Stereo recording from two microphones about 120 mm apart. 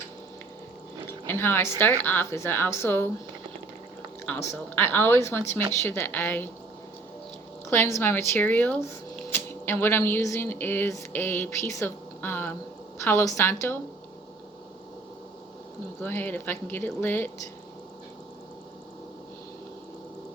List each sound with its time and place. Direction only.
1.3 s a woman's voice: 20° left (ahead or behind)
4.3 s speech: 20° left (ahead or behind)
7.7 s speech: 25° left (ahead or behind)
16.0 s speech: 15° left (ahead or behind)